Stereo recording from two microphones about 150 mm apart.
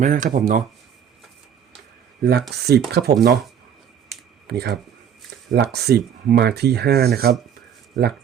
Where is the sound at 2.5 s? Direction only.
90° right.